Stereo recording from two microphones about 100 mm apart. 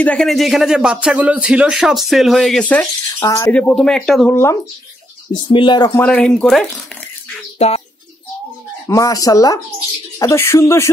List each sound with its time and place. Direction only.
0.0 s speech: 15° left (ahead or behind)
0.3 s speech: centre (ahead or behind)
2.6 s speech: 10° left (ahead or behind)
3.2 s speech: 35° left (ahead or behind)
3.5 s speech: 10° left (ahead or behind)
4.3 s speech: 25° left (ahead or behind)
5.5 s speech: 60° left (ahead or behind)
5.9 s speech: 10° left (ahead or behind)
7.5 s speech: 90° left
8.8 s speech: 35° left (ahead or behind)